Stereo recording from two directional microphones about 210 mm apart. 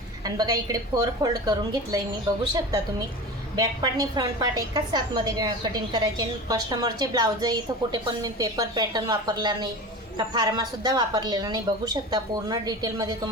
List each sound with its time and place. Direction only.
0.3 s a woman's voice: 20° right (ahead or behind)
3.5 s a woman's voice: 20° right (ahead or behind)